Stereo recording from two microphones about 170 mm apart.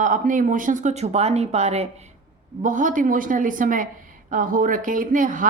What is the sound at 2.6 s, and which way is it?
Speech, 50° right (ahead or behind).